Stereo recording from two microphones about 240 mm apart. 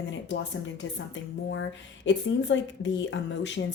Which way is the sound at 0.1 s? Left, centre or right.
Left.